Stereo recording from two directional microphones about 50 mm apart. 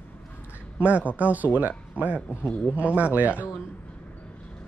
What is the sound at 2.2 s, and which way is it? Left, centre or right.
Speech, left.